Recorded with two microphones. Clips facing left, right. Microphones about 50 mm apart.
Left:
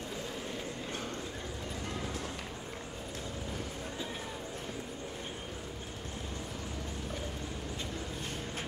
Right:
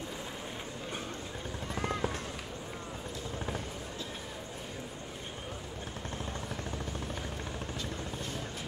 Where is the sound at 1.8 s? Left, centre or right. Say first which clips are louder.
Right 7 dB; right.